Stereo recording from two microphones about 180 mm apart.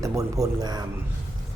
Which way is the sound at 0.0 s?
20° right (ahead or behind).